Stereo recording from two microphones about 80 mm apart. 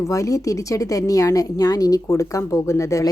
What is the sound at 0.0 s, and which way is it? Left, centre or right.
Speech, left.